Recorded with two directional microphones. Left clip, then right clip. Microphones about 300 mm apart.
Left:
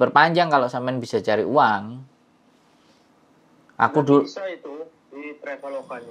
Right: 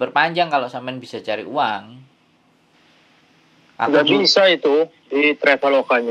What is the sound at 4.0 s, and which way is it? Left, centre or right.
A man's voice, right.